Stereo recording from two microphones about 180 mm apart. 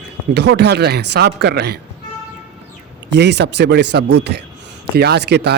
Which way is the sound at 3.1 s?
70° right (ahead or behind).